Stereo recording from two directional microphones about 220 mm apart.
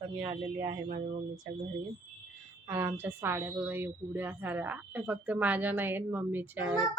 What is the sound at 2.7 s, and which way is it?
A woman's voice, 10° right (ahead or behind).